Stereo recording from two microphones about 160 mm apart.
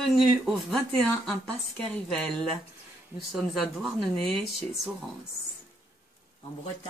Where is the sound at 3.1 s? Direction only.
Centre (ahead or behind).